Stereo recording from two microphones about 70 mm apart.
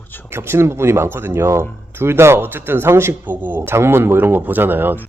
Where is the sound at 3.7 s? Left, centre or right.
Right.